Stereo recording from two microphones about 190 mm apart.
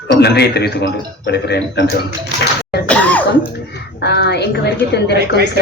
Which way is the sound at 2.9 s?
10° left (ahead or behind).